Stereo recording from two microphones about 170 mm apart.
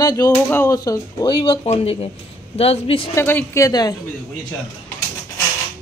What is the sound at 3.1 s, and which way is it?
Speech, 15° left (ahead or behind).